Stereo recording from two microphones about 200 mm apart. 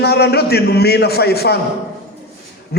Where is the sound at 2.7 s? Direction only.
55° left (ahead or behind).